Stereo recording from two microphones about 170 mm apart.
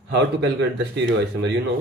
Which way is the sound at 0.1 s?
90° right.